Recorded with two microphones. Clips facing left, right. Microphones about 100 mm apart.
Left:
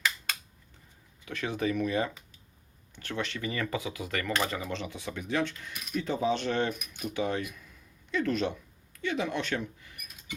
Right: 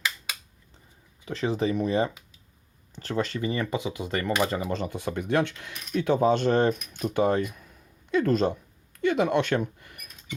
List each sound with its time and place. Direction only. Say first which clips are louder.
1.2 s speech: right 5 dB; 25° right (ahead or behind)
3.5 s speech: right 4 dB; 20° right (ahead or behind)
4.7 s speech: right 6 dB; 45° right (ahead or behind)
9.0 s speech: right 8 dB; 55° right (ahead or behind)